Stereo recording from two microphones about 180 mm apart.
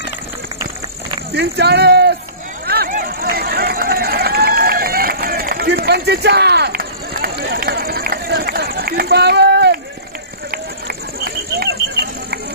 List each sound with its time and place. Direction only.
1.3 s speech: 65° right (ahead or behind)
2.6 s run: 60° right (ahead or behind)
10.5 s a sound: 60° right (ahead or behind)